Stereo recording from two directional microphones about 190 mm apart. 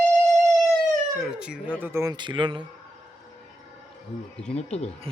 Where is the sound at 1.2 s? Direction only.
5° right (ahead or behind); by 2.6 s 25° right (ahead or behind).